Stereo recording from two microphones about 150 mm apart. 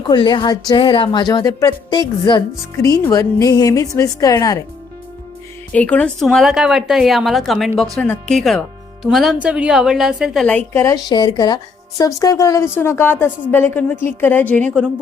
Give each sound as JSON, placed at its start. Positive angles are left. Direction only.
{"t": 0.1, "sound": "a woman's voice", "side_deg": 30}
{"t": 5.7, "sound": "speech", "side_deg": 10}
{"t": 10.8, "sound": "speech", "side_deg": 25}